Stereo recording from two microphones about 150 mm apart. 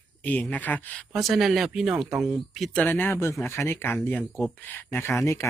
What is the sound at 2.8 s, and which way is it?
Speech, 15° left (ahead or behind).